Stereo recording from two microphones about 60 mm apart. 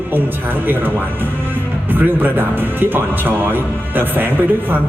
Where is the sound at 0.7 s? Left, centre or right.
Right.